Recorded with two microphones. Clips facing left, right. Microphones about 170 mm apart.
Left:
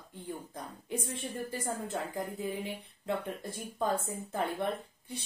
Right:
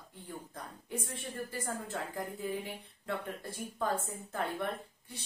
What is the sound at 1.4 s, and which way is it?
Speech, 20° left (ahead or behind).